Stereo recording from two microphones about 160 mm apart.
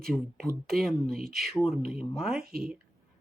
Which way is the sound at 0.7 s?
Centre (ahead or behind).